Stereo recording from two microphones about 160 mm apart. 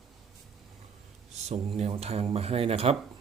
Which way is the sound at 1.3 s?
45° right (ahead or behind).